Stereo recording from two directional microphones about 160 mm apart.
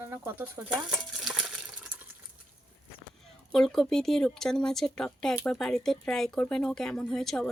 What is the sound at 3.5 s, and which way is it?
Speech, 5° left (ahead or behind).